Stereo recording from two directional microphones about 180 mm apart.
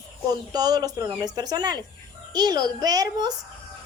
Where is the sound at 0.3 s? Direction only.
20° right (ahead or behind).